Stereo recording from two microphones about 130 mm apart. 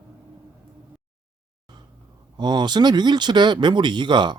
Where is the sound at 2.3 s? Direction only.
35° right (ahead or behind).